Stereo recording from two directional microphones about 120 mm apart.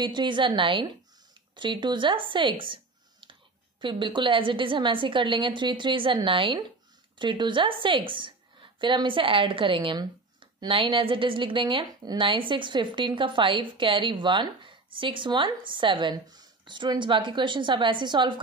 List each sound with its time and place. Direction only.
0.0 s a woman's voice: 40° right (ahead or behind)